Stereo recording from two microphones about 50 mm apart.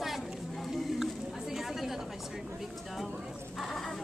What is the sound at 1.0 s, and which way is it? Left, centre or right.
Chatter, centre.